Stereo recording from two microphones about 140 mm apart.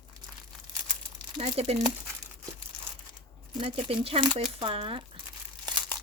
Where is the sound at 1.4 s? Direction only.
45° right (ahead or behind).